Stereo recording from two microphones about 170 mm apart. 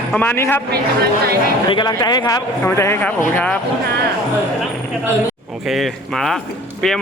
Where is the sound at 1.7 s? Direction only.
25° left (ahead or behind).